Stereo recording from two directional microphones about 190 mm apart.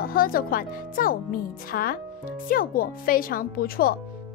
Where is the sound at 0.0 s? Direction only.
50° left (ahead or behind).